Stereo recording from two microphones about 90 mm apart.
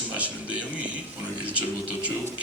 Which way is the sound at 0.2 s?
15° right (ahead or behind).